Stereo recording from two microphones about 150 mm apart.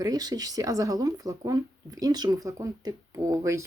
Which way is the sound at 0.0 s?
25° right (ahead or behind).